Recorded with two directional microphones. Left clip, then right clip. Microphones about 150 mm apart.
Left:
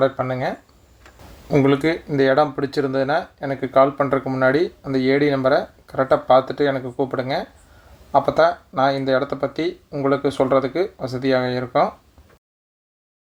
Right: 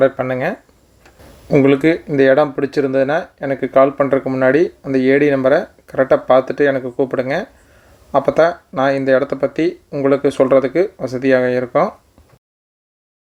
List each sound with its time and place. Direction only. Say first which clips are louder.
0.2 s speech: right 4 dB; 25° right (ahead or behind)